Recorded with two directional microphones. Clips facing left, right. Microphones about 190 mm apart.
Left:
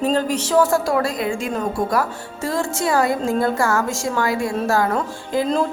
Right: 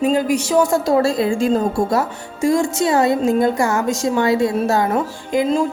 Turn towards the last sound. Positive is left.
turn(degrees=-20)  # may be behind; listen again after turning